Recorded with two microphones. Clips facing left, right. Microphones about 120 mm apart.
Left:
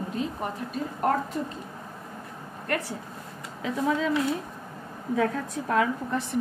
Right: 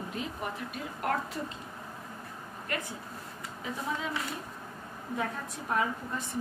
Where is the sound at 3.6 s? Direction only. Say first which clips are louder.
Left 8 dB; 90° left.